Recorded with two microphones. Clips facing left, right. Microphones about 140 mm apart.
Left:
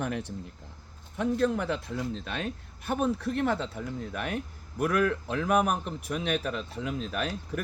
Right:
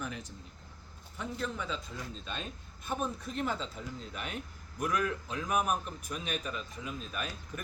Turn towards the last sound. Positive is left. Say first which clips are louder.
# left 8 dB
turn(degrees=70)  # may be behind; listen again after turning